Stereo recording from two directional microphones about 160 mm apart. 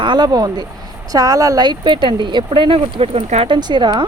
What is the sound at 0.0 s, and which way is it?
Speech, 25° right (ahead or behind).